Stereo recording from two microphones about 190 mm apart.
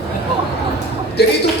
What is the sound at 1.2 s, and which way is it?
Speech, 60° left (ahead or behind).